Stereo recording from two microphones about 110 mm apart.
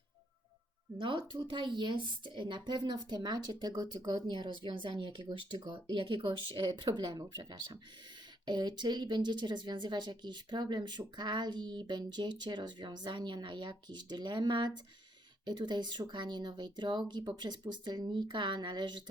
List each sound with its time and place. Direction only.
0.9 s speech: 50° right (ahead or behind)